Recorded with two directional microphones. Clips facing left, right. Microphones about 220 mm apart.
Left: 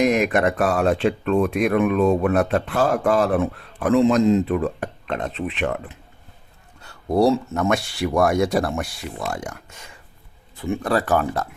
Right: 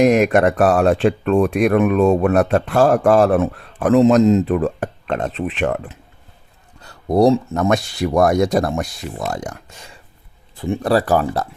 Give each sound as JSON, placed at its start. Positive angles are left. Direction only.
{"t": 0.0, "sound": "a man's voice", "side_deg": -40}
{"t": 6.8, "sound": "speech", "side_deg": -35}